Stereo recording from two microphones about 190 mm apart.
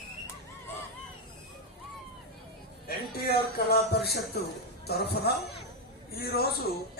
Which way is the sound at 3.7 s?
55° left (ahead or behind).